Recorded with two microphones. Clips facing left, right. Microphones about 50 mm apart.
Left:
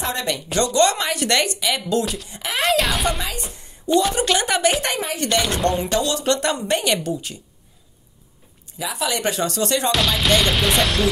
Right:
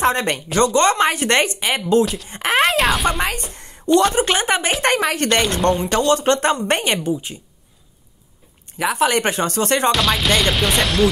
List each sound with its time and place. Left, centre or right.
0.0 s speech: right
2.2 s speech: right
2.6 s music: centre
3.6 s a sound: right
4.1 s speech: right
5.1 s speech: right
5.4 s music: centre
6.0 s speech: right
7.0 s speech: centre
8.6 s speech: right
9.8 s music: centre